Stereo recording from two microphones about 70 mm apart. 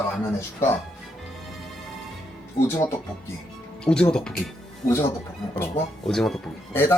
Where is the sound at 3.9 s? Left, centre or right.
Centre.